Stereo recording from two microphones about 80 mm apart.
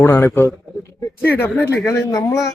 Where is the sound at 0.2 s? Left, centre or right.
Left.